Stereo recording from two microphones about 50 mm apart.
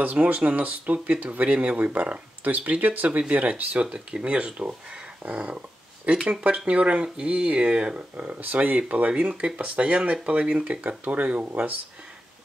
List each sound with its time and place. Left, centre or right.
0.0 s speech: right
8.4 s speech: right